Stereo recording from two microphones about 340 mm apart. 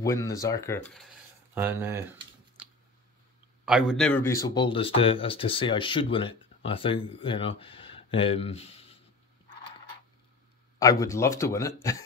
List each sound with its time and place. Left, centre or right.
0.0 s speech: centre
1.5 s speech: centre
3.6 s speech: centre
10.8 s speech: centre